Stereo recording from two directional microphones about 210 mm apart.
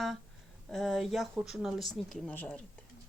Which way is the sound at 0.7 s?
Centre (ahead or behind).